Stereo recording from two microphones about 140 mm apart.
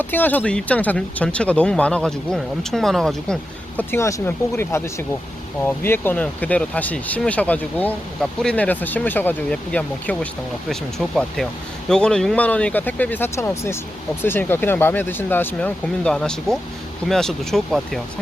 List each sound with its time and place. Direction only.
0.0 s speech: 15° left (ahead or behind)
3.8 s speech: 20° left (ahead or behind); by 18.0 s 5° left (ahead or behind)